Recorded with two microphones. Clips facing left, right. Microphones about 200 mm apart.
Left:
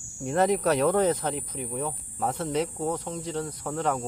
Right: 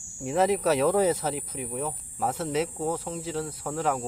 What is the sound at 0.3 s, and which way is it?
Speech, centre (ahead or behind).